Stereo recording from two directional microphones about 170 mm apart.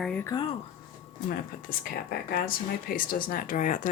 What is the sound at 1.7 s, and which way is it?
Speech, 60° left (ahead or behind).